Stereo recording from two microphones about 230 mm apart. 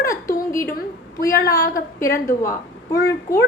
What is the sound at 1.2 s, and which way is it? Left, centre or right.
Speech, left.